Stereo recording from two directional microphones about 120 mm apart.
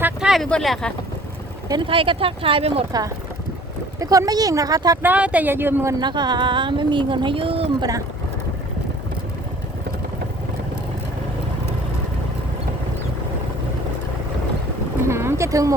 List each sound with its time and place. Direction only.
0.0 s a sound: 5° right (ahead or behind)
0.4 s speech: 5° left (ahead or behind)
1.6 s speech: 35° right (ahead or behind)
1.9 s speech: 50° right (ahead or behind)
4.0 s speech: 30° right (ahead or behind)
5.0 s speech: 10° right (ahead or behind)
6.0 s speech: 35° right (ahead or behind)
7.8 s speech: 30° right (ahead or behind)
15.0 s a sound: 20° right (ahead or behind)